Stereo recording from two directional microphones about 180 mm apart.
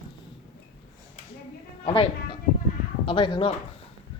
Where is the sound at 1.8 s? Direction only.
30° left (ahead or behind).